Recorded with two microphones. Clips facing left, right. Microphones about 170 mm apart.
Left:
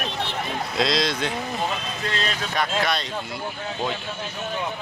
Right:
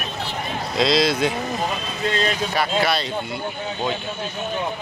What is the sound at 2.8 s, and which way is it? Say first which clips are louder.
Speech: right 3 dB; 5° right (ahead or behind).